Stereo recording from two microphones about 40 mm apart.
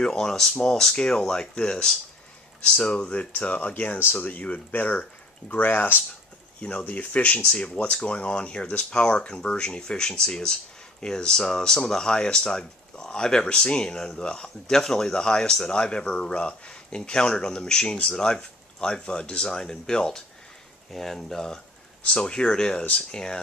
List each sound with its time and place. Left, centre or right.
0.0 s speech: centre; by 5.9 s left
6.6 s speech: left; by 20.2 s centre
20.9 s speech: centre
22.1 s speech: left